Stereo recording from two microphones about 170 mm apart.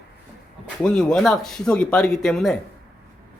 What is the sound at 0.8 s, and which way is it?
Speech, 5° left (ahead or behind).